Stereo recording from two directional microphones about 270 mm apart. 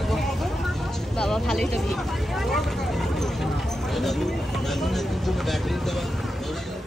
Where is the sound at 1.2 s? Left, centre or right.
Centre.